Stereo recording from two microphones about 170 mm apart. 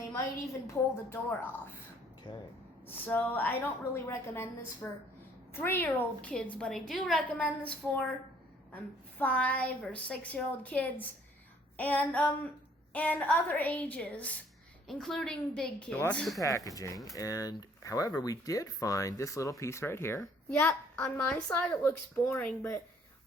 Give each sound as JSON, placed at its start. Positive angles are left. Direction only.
{"t": 0.7, "sound": "a woman's voice", "side_deg": 15}
{"t": 2.3, "sound": "speech", "side_deg": 25}
{"t": 2.9, "sound": "a woman's voice", "side_deg": 10}
{"t": 16.4, "sound": "a woman's voice", "side_deg": 20}